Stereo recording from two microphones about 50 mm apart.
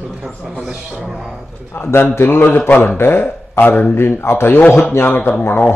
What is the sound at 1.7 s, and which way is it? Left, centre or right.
Speech, left.